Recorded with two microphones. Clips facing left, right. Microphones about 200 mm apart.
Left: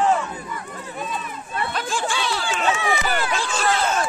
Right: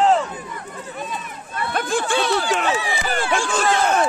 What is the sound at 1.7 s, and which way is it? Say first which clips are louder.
Speech: right 8 dB; 60° right (ahead or behind).